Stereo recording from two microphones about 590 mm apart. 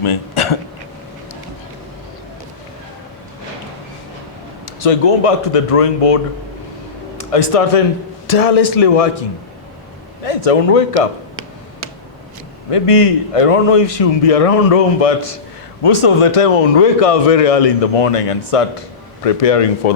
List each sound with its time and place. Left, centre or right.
0.0 s speech: left
4.8 s a man's voice: left
7.2 s a man's voice: left
10.2 s a man's voice: left
12.7 s a man's voice: left
19.8 s speech: left